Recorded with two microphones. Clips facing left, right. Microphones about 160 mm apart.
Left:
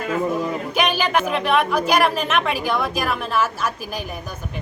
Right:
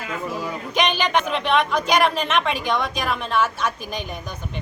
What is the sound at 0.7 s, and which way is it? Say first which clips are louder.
Speech: right 1 dB; 5° left (ahead or behind).